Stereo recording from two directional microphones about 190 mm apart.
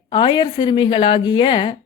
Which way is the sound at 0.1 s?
25° left (ahead or behind).